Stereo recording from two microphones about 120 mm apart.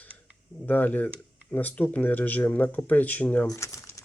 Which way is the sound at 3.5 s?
30° left (ahead or behind).